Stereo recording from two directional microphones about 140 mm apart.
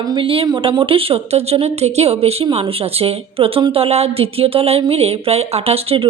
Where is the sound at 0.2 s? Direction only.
40° right (ahead or behind).